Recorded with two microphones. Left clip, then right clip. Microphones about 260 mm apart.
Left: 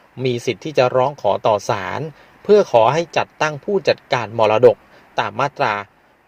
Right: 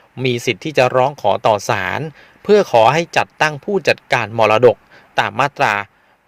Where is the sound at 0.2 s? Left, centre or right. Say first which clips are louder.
Right 3 dB; right.